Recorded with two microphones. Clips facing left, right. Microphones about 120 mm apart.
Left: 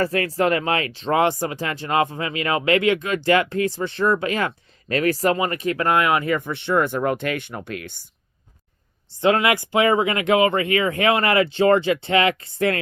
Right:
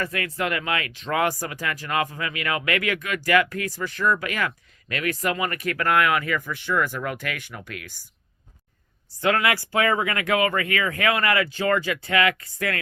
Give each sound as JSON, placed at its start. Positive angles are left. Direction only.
{"t": 0.0, "sound": "speech", "side_deg": 35}
{"t": 9.0, "sound": "speech", "side_deg": 20}